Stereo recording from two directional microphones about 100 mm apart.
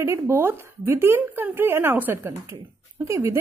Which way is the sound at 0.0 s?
25° right (ahead or behind).